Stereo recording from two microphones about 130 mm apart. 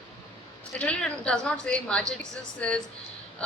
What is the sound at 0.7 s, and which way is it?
A woman's voice, 10° left (ahead or behind).